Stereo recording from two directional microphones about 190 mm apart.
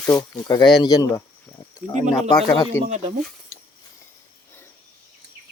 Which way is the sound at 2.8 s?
35° right (ahead or behind).